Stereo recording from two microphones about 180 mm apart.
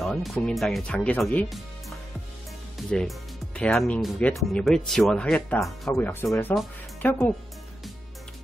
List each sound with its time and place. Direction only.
0.0 s speech: centre (ahead or behind)